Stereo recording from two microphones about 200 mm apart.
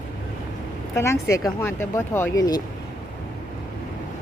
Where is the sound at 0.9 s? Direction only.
15° left (ahead or behind).